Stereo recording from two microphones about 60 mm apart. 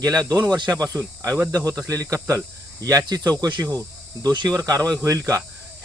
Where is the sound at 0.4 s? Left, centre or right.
Right.